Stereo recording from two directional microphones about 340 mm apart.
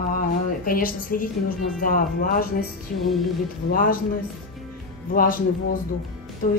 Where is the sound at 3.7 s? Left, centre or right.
Left.